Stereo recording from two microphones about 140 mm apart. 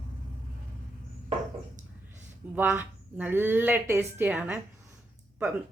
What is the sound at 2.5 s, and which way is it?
Speech, 15° right (ahead or behind).